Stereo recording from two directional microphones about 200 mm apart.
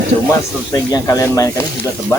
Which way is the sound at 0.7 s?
20° left (ahead or behind).